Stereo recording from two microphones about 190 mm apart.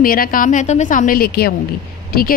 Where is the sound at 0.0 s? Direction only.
50° left (ahead or behind).